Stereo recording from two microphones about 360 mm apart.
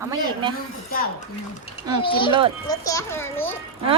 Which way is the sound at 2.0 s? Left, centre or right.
Centre.